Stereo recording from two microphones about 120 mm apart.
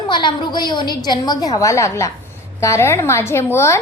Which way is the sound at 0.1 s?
40° left (ahead or behind).